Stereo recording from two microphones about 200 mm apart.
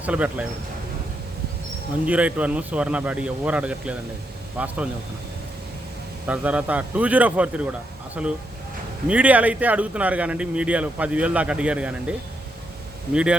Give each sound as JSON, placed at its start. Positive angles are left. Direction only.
{"t": 0.0, "sound": "speech", "side_deg": -5}
{"t": 2.0, "sound": "speech", "side_deg": -5}
{"t": 6.2, "sound": "speech", "side_deg": -5}